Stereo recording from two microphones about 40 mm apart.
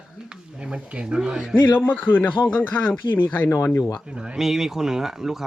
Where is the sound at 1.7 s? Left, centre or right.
Left.